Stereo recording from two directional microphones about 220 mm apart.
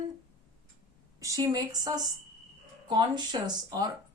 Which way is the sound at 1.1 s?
15° right (ahead or behind).